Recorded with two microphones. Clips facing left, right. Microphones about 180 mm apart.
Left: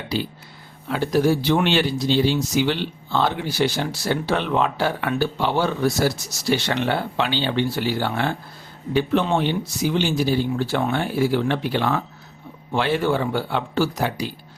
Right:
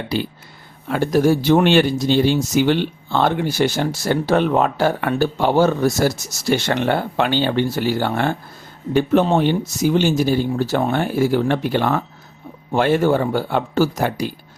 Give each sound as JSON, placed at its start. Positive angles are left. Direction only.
{"t": 0.9, "sound": "speech", "side_deg": -50}